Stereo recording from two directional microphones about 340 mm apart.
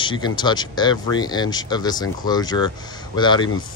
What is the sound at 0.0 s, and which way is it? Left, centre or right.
Speech, centre.